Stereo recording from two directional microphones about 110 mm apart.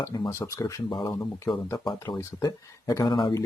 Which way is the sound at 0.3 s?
25° left (ahead or behind).